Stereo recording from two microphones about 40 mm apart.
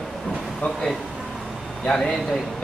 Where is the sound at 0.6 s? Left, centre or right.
Left.